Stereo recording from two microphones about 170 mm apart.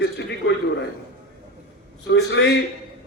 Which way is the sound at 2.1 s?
90° left.